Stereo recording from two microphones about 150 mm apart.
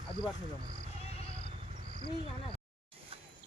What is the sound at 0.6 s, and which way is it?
Speech, 90° left.